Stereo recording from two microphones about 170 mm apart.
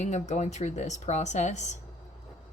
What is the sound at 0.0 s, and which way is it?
Speech, 45° left (ahead or behind).